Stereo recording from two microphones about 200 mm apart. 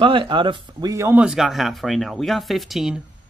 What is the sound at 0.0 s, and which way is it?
Speech, 25° right (ahead or behind).